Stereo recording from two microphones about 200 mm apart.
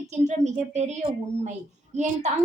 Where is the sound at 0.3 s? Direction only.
35° right (ahead or behind).